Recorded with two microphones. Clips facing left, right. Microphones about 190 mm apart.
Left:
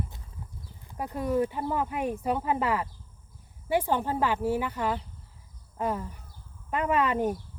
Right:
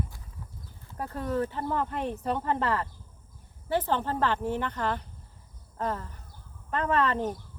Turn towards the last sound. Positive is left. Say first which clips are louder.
# left 1 dB
turn(degrees=10)  # may be behind; listen again after turning